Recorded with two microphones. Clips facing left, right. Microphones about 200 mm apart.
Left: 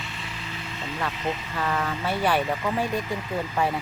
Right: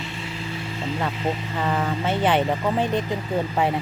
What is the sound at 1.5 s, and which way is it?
Speech, 20° right (ahead or behind).